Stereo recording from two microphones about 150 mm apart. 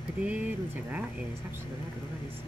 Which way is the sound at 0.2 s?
10° right (ahead or behind).